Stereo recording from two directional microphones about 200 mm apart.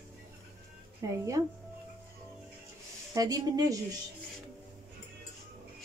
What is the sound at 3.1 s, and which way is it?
Speech, 20° right (ahead or behind).